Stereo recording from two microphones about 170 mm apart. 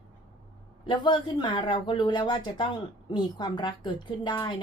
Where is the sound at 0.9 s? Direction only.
25° left (ahead or behind).